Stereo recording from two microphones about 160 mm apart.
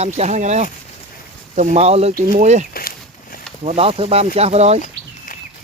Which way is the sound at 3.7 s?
35° right (ahead or behind).